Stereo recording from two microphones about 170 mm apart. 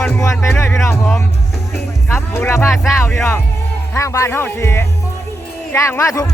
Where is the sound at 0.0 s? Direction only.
15° left (ahead or behind).